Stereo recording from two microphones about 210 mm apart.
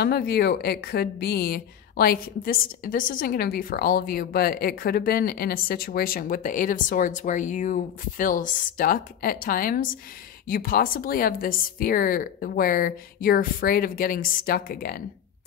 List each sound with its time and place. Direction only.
0.0 s a woman's voice: 50° left (ahead or behind)